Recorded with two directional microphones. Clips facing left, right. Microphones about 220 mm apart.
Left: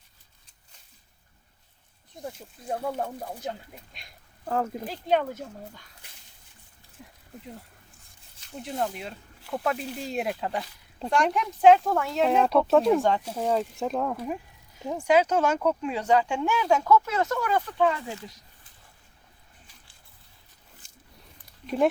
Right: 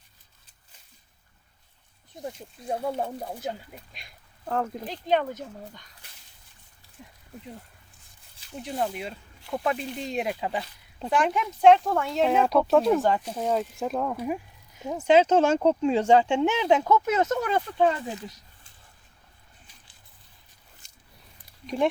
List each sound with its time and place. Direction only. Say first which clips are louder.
2.1 s speech: right 2 dB; 5° right (ahead or behind)
4.4 s speech: left 1 dB; 5° left (ahead or behind)
8.6 s speech: right 1 dB; 5° right (ahead or behind)
15.0 s speech: right 3 dB; 25° right (ahead or behind)